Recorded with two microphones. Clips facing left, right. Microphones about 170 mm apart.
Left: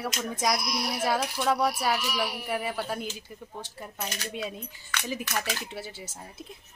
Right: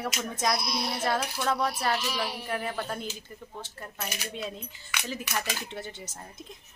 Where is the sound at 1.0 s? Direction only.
10° left (ahead or behind).